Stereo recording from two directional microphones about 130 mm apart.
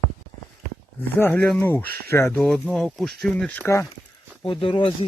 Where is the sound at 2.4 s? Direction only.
5° left (ahead or behind).